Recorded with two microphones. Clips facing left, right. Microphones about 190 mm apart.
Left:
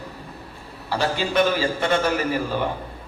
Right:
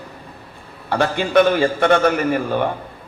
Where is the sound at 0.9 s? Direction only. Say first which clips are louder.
Right 6 dB; 55° right (ahead or behind).